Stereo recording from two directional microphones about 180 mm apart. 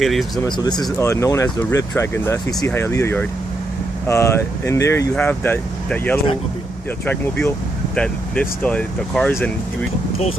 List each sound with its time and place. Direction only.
0.0 s speech: centre (ahead or behind)
0.4 s speech: 25° left (ahead or behind); by 9.5 s 5° left (ahead or behind)